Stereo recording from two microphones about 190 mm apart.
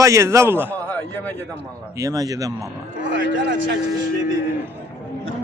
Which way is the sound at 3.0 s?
75° right (ahead or behind).